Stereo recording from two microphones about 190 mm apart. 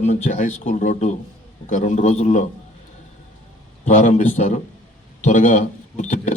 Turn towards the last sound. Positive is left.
turn(degrees=40)  # may be behind; listen again after turning